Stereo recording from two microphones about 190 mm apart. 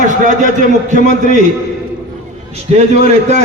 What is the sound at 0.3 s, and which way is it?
A man's voice, 40° right (ahead or behind).